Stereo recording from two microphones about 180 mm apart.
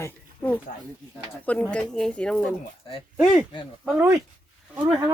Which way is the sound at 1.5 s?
5° left (ahead or behind).